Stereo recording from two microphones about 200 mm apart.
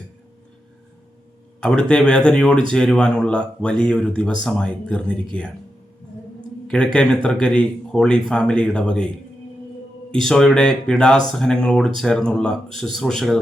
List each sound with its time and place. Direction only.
1.6 s speech: 5° left (ahead or behind)
6.7 s speech: 5° left (ahead or behind)
10.2 s speech: 5° left (ahead or behind)